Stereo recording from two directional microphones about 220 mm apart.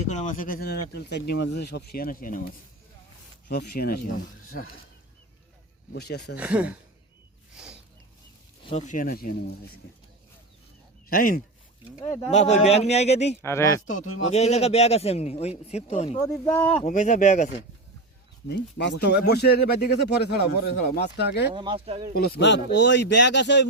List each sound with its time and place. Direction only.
0.1 s speech: 35° left (ahead or behind)
3.5 s speech: 45° left (ahead or behind)
5.9 s speech: 50° left (ahead or behind)
6.3 s speech: 5° right (ahead or behind)
8.6 s speech: 35° left (ahead or behind)
11.1 s a man's voice: 40° left (ahead or behind)
13.4 s speech: 10° left (ahead or behind)
13.8 s a man's voice: 35° left (ahead or behind)
16.2 s speech: 15° left (ahead or behind)
16.8 s speech: 35° left (ahead or behind)
18.4 s speech: 50° left (ahead or behind)
21.5 s speech: 20° right (ahead or behind)
22.1 s speech: 45° left (ahead or behind)